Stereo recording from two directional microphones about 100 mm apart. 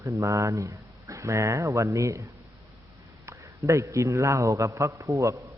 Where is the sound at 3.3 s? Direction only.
30° right (ahead or behind).